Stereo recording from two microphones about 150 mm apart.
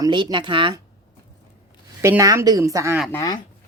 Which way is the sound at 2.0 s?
20° right (ahead or behind).